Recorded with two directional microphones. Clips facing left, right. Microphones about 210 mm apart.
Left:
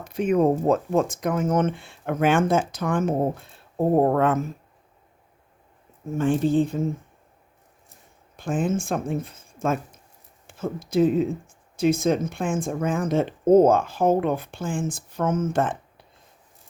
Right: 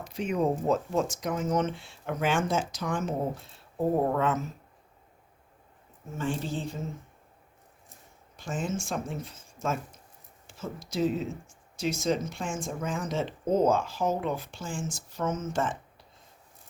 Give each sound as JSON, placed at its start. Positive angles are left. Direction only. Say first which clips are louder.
{"t": 0.0, "sound": "speech", "louder": "left 8 dB", "side_deg": 55}
{"t": 6.1, "sound": "speech", "louder": "left 12 dB", "side_deg": 55}
{"t": 8.4, "sound": "speech", "louder": "left 8 dB", "side_deg": 55}